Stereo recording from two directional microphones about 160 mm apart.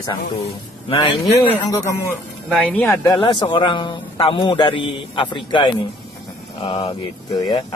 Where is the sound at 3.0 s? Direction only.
25° left (ahead or behind).